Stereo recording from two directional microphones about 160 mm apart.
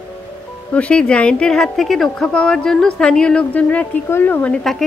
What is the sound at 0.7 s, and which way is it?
A woman's voice, 5° left (ahead or behind).